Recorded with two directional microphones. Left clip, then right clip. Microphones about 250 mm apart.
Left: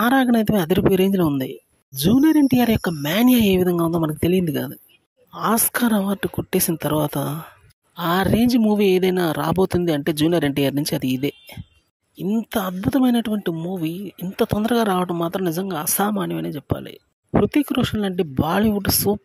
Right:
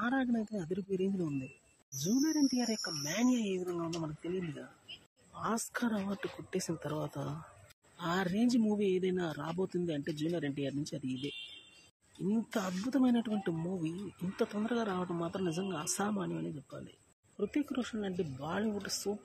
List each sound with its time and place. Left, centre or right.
0.0 s speech: left
5.3 s speech: left
12.3 s speech: left